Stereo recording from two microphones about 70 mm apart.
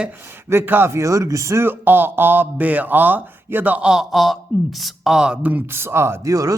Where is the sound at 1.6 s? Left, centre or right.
Right.